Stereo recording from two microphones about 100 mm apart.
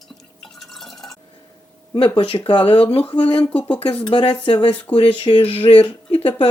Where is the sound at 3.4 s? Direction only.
15° left (ahead or behind).